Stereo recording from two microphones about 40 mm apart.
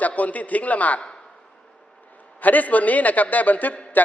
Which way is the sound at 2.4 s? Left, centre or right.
Left.